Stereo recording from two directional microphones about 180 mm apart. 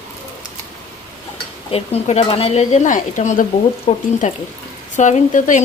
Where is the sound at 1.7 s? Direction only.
35° left (ahead or behind).